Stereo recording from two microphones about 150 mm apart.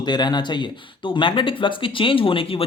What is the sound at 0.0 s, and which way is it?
Speech, 30° left (ahead or behind).